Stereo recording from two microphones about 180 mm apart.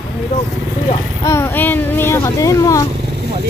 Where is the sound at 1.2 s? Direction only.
15° left (ahead or behind).